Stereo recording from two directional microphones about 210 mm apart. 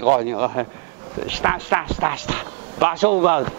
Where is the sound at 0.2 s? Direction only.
15° right (ahead or behind).